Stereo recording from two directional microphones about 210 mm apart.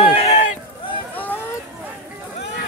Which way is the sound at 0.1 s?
30° left (ahead or behind).